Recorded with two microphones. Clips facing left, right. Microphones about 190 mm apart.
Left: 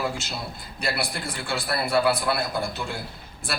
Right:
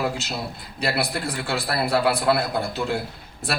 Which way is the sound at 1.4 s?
65° right (ahead or behind).